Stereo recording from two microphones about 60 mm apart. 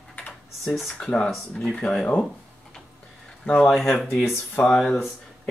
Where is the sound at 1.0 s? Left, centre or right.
Centre.